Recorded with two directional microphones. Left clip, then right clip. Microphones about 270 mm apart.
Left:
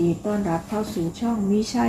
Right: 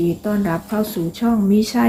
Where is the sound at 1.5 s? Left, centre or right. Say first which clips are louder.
Right 3 dB; right.